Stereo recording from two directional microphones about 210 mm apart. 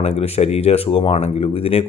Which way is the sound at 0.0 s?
30° left (ahead or behind).